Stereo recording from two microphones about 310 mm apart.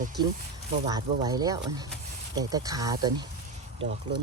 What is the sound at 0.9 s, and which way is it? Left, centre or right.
Speech, centre.